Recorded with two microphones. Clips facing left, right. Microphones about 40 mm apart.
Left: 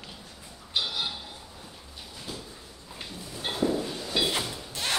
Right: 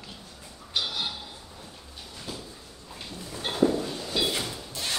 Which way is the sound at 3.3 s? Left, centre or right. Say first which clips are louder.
Right 3 dB; centre.